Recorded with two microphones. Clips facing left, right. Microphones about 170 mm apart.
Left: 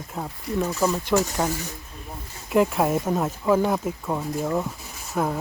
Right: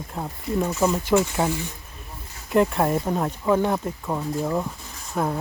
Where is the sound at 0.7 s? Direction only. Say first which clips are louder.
Right 1 dB; 20° right (ahead or behind).